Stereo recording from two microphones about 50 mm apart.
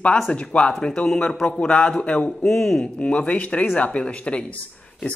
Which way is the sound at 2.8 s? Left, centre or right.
Left.